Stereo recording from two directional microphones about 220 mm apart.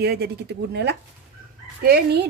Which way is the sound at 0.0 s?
45° right (ahead or behind).